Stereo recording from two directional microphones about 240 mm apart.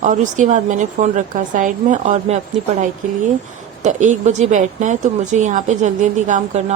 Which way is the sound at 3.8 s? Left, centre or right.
Right.